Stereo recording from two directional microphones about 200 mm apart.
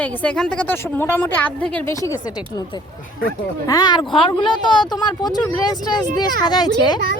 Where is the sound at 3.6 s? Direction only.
20° left (ahead or behind).